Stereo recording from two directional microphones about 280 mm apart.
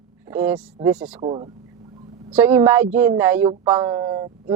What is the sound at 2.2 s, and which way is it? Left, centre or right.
Speech, centre.